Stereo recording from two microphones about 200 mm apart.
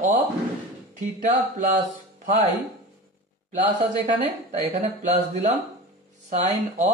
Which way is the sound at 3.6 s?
40° right (ahead or behind).